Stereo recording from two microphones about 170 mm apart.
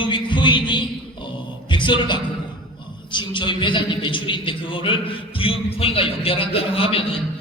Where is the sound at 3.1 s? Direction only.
30° left (ahead or behind).